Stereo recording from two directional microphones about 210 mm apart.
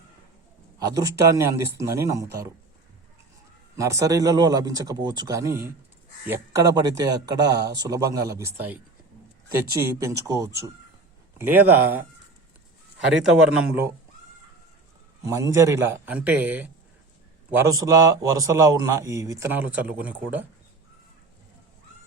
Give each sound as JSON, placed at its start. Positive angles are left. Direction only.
{"t": 0.9, "sound": "a man's voice", "side_deg": -15}
{"t": 3.8, "sound": "a man's voice", "side_deg": -15}
{"t": 13.7, "sound": "a man's voice", "side_deg": -10}
{"t": 15.2, "sound": "a man's voice", "side_deg": -15}